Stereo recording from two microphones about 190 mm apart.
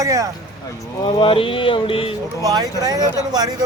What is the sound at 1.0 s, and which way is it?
Speech, 25° left (ahead or behind).